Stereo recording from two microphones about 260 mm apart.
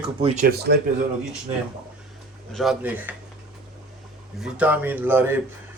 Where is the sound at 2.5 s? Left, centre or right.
Centre.